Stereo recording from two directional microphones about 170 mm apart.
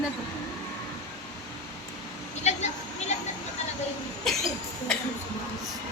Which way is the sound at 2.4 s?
40° left (ahead or behind).